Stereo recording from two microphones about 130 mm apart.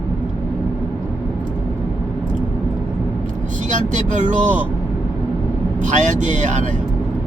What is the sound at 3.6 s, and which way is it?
Speech, 75° right (ahead or behind).